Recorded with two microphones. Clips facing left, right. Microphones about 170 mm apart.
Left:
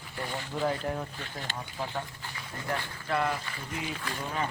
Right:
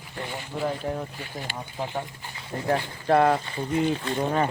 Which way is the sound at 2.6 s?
45° right (ahead or behind).